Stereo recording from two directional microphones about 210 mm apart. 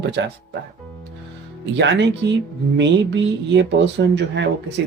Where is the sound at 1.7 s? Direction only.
55° right (ahead or behind).